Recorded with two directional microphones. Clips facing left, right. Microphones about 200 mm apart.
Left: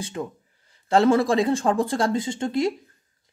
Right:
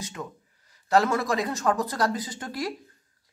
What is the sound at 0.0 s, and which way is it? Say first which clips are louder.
Speech: left 6 dB; 30° left (ahead or behind).